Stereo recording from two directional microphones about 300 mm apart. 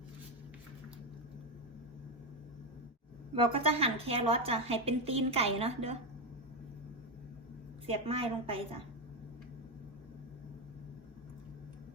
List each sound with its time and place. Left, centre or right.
3.3 s a woman's voice: centre
7.9 s a woman's voice: centre